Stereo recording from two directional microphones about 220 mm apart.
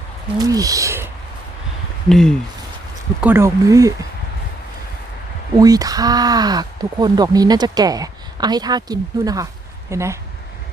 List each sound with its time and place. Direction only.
0.3 s speech: 15° right (ahead or behind)
2.0 s speech: centre (ahead or behind)
3.2 s speech: 10° right (ahead or behind)
5.5 s speech: 15° right (ahead or behind)